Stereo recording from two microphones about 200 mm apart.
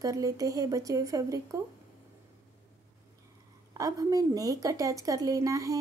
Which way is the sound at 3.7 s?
15° right (ahead or behind).